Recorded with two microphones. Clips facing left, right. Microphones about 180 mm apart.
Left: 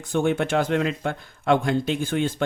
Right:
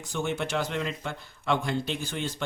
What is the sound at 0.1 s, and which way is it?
Speech, 55° left (ahead or behind).